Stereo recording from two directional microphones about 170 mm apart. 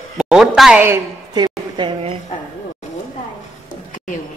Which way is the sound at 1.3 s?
25° right (ahead or behind).